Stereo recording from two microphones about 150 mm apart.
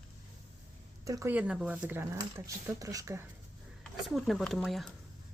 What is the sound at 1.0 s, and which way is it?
Speech, 20° right (ahead or behind).